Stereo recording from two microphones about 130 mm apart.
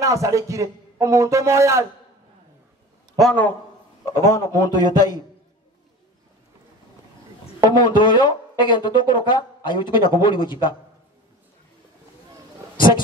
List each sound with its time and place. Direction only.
0.0 s a man's voice: 25° right (ahead or behind)
3.2 s a man's voice: 10° left (ahead or behind)
4.0 s a man's voice: 25° left (ahead or behind)
7.7 s speech: 35° left (ahead or behind)